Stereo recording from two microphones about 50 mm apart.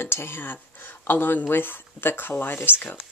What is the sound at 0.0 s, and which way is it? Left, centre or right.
Speech, left.